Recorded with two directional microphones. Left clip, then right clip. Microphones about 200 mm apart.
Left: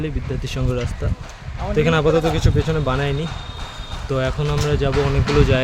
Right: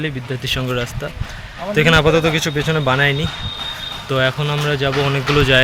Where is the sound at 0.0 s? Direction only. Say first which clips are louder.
Right 4 dB; 5° left (ahead or behind).